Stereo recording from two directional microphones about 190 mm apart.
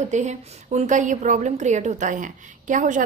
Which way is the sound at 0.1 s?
40° right (ahead or behind).